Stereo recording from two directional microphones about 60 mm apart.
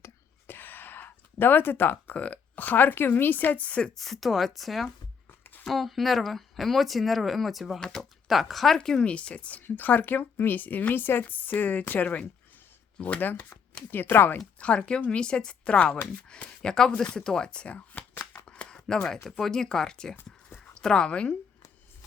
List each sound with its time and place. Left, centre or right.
0.4 s gasp: left
2.1 s speech: left
3.9 s speech: centre; by 14.4 s left
14.6 s speech: centre
18.4 s chopping: centre
18.9 s speech: centre
20.5 s dog: left
20.8 s speech: centre